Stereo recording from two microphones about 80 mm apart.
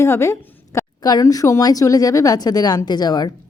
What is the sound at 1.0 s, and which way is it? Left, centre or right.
A woman's voice, left.